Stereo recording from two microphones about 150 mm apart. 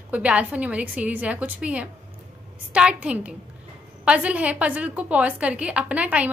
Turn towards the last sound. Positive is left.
turn(degrees=-10)  # may be behind; listen again after turning